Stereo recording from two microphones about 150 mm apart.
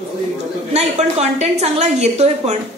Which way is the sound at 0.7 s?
45° right (ahead or behind).